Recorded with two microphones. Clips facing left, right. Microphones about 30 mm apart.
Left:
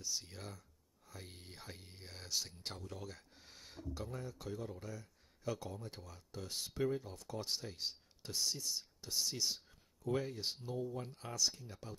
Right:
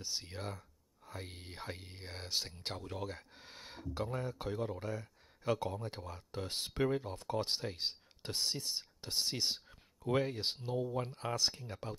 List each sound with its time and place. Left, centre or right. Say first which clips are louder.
0.0 s speech: right 3 dB; right